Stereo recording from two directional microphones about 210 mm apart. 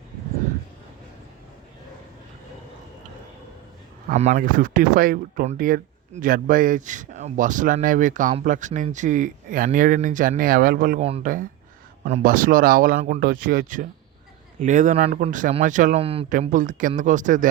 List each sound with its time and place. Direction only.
4.1 s speech: 35° right (ahead or behind)